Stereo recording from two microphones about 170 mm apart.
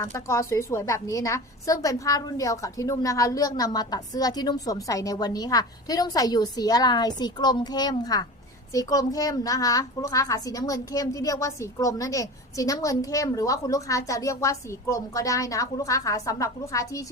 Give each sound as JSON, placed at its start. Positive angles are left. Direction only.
{"t": 0.0, "sound": "a woman's voice", "side_deg": 15}